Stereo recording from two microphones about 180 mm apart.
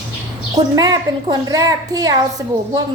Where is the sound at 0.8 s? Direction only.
20° right (ahead or behind).